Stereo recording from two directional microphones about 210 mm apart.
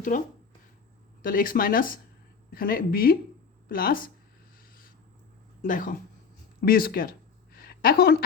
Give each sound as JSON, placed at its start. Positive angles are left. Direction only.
{"t": 1.2, "sound": "speech", "side_deg": 40}
{"t": 5.6, "sound": "speech", "side_deg": 40}
{"t": 7.5, "sound": "a sound", "side_deg": 45}